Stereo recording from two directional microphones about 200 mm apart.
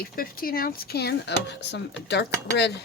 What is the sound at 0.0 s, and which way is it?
Speech, 45° left (ahead or behind).